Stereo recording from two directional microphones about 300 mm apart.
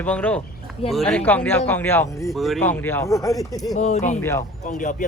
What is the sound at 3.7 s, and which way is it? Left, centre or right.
Speech, left.